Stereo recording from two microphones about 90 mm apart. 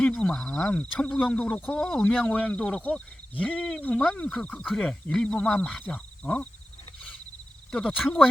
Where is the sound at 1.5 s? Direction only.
25° left (ahead or behind).